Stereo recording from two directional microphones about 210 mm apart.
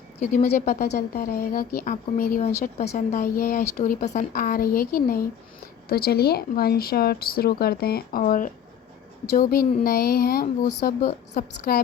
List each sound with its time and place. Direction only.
0.2 s a woman's voice: 35° left (ahead or behind)